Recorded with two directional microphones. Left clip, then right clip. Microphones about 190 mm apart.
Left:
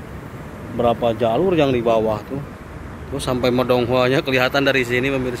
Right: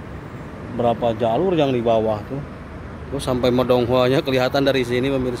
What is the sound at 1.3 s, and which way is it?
Speech, 40° left (ahead or behind).